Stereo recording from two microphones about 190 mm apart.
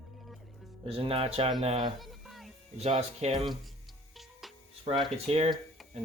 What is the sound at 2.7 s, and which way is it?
Speech, 35° right (ahead or behind).